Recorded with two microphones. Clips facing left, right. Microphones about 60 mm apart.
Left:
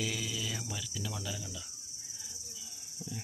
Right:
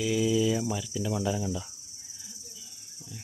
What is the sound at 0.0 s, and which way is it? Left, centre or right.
Speech, centre.